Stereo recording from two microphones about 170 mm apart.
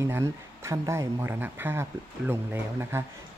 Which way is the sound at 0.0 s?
15° right (ahead or behind).